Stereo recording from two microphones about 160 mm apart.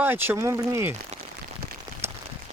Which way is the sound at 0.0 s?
10° right (ahead or behind).